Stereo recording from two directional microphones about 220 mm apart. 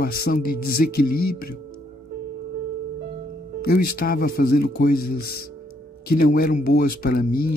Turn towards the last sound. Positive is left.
turn(degrees=40)  # may be behind; listen again after turning